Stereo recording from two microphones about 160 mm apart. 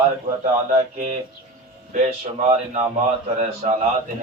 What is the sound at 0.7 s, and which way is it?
Speech, 50° right (ahead or behind).